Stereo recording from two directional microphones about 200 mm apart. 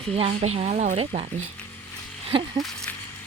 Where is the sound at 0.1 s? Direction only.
30° right (ahead or behind).